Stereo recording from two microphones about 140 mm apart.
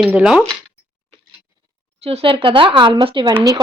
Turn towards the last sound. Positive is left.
turn(degrees=-35)  # may be behind; listen again after turning